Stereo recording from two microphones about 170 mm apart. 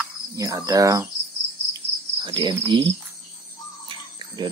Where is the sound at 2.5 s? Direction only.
20° right (ahead or behind).